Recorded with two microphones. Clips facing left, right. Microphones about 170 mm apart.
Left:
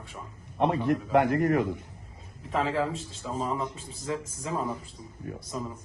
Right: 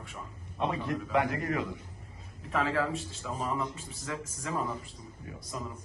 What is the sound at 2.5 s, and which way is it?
A man's voice, 30° left (ahead or behind).